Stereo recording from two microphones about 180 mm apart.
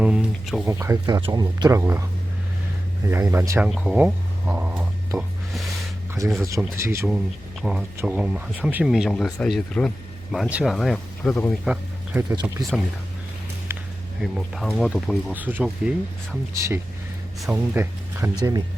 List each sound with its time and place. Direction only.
0.0 s speech: 5° right (ahead or behind)
0.6 s speech: 15° right (ahead or behind)
3.1 s speech: 15° right (ahead or behind)
7.6 s speech: 5° right (ahead or behind)
11.6 s speech: 5° right (ahead or behind)
13.7 s a sound: 15° right (ahead or behind)
14.2 s speech: centre (ahead or behind); by 18.6 s 20° right (ahead or behind)